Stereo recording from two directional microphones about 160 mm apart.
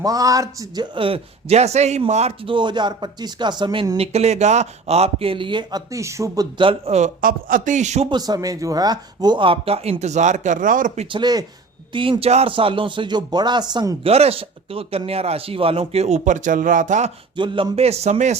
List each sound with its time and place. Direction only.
0.0 s speech: 20° right (ahead or behind)
0.9 s speech: 35° right (ahead or behind)
7.2 s a man's voice: 60° right (ahead or behind)
8.1 s speech: 25° right (ahead or behind); by 11.2 s 40° right (ahead or behind)
11.2 s speech: 25° right (ahead or behind); by 17.1 s 50° right (ahead or behind)
17.3 s speech: 30° right (ahead or behind); by 18.3 s 45° right (ahead or behind)